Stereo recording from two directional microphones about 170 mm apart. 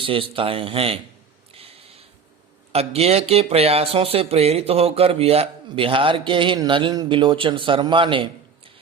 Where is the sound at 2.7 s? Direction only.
35° right (ahead or behind).